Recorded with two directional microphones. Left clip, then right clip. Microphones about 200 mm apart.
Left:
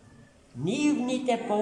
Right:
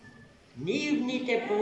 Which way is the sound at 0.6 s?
60° left (ahead or behind).